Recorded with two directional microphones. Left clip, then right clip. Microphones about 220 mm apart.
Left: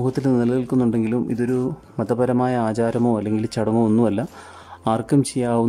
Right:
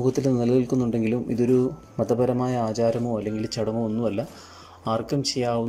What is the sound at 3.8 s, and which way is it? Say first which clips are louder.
Speech: left 6 dB; 15° left (ahead or behind).